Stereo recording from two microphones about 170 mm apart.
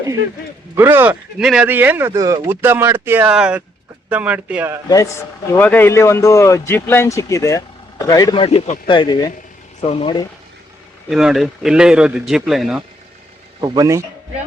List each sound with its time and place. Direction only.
0.8 s speech: 15° right (ahead or behind)
5.5 s speech: 10° left (ahead or behind); by 8.8 s 40° left (ahead or behind)
8.9 s speech: 30° left (ahead or behind)
11.1 s speech: centre (ahead or behind)
13.6 s a man's voice: 20° right (ahead or behind)